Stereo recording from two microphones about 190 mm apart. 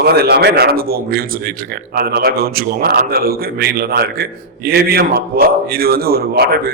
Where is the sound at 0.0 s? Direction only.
55° right (ahead or behind).